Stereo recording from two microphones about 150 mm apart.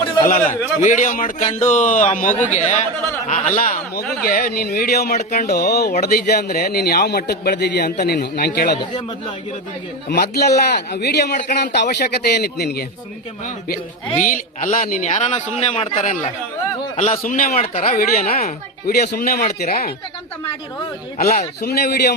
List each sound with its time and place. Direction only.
0.8 s a man's voice: 55° left (ahead or behind)
1.4 s a man's voice: 50° left (ahead or behind); by 4.0 s 65° left (ahead or behind)
4.2 s a man's voice: 80° left
10.2 s a man's voice: 90° left
14.2 s a man's voice: 60° left (ahead or behind)
17.6 s speech: 45° left (ahead or behind)
18.9 s a man's voice: 85° left
21.2 s a man's voice: 90° left